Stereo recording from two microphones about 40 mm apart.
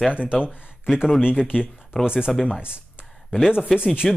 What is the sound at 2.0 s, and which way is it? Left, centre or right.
Speech, right.